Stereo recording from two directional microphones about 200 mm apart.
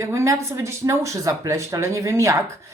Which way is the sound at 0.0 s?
15° right (ahead or behind).